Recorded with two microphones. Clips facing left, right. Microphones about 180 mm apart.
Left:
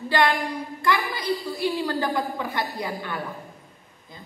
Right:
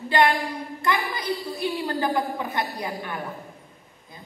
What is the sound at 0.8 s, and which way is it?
A woman's voice, 20° right (ahead or behind).